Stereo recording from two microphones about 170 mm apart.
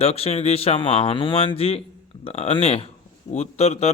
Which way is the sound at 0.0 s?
35° left (ahead or behind).